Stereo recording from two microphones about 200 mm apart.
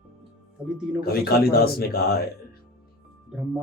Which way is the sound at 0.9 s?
50° left (ahead or behind).